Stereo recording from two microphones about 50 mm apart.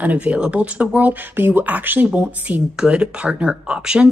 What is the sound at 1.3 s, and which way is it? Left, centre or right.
Speech, right.